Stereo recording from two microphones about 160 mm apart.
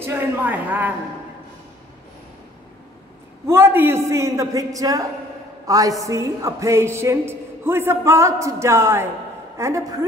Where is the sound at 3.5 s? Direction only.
15° right (ahead or behind).